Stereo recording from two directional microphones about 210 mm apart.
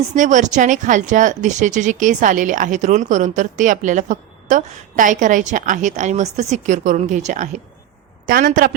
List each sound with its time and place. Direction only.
0.1 s speech: 35° right (ahead or behind)